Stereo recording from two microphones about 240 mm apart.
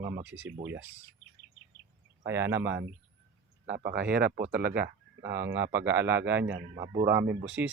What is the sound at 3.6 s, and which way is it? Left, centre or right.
Speech, right.